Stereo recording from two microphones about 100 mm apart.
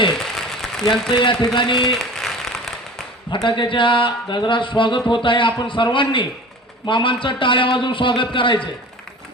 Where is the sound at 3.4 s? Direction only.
50° left (ahead or behind).